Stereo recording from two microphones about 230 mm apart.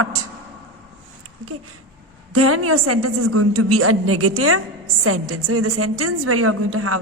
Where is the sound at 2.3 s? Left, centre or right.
Right.